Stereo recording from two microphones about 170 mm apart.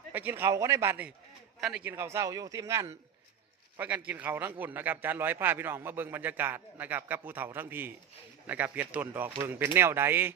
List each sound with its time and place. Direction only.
0.1 s a man's voice: 10° right (ahead or behind)